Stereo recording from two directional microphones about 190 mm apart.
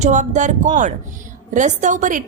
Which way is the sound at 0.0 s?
40° right (ahead or behind).